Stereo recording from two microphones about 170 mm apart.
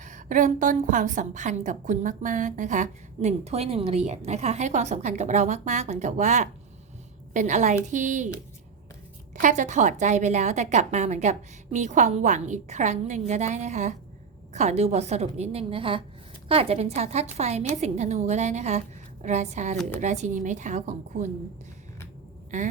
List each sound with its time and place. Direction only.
0.0 s a woman's voice: 45° right (ahead or behind)
9.3 s a woman's voice: 45° right (ahead or behind)